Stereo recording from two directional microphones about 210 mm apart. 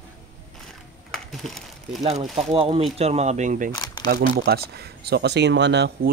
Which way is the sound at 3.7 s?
20° left (ahead or behind).